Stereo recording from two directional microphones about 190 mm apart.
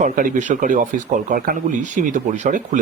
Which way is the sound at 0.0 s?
40° right (ahead or behind).